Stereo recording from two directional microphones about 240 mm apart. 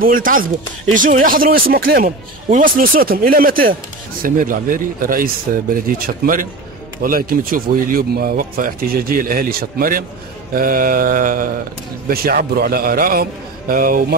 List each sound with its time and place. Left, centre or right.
0.0 s speech: right